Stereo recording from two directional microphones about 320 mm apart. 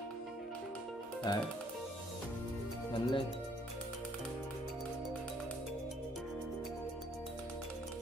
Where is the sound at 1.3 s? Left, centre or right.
Centre.